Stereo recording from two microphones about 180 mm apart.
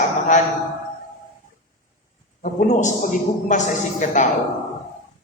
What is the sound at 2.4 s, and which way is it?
A man's voice, 45° left (ahead or behind).